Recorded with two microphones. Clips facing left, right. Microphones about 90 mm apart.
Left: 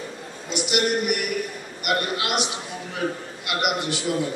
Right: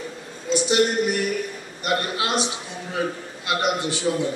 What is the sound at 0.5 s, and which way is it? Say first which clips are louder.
Speech: right 3 dB; 30° right (ahead or behind).